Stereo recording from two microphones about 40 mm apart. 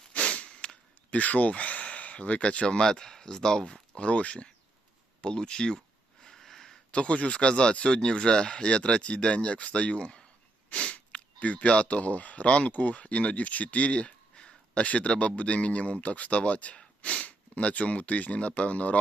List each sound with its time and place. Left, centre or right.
0.1 s a sound: left
1.1 s speech: left
2.8 s speech: centre
3.9 s speech: left
6.2 s a sound: centre
6.9 s speech: left
10.7 s sneeze: left
11.1 s a sound: left
11.7 s speech: left